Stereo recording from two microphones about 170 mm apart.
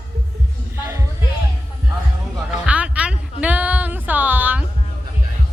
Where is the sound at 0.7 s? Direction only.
15° right (ahead or behind).